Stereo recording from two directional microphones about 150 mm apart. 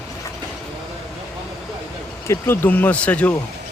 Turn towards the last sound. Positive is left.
turn(degrees=10)  # may be behind; listen again after turning